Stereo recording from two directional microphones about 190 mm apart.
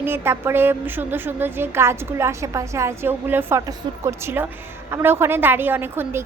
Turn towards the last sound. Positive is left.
turn(degrees=-10)  # may be behind; listen again after turning